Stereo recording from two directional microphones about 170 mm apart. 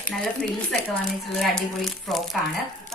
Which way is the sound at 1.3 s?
Centre (ahead or behind).